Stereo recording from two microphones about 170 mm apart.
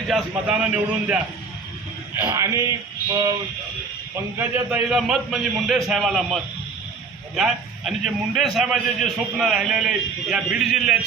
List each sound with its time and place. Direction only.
0.1 s a man's voice: 5° right (ahead or behind)
2.2 s speech: 20° right (ahead or behind)
4.1 s a man's voice: 10° right (ahead or behind)